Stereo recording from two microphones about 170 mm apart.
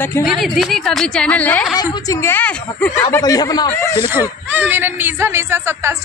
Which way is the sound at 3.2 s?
20° left (ahead or behind).